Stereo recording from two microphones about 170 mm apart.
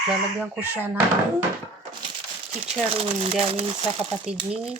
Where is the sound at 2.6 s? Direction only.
35° right (ahead or behind).